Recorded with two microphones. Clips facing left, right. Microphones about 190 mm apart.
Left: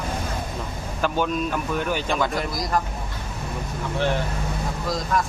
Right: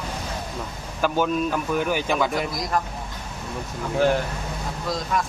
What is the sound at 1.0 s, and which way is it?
A man's voice, 5° right (ahead or behind).